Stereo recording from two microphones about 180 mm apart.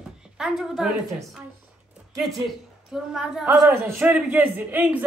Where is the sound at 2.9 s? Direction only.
5° right (ahead or behind).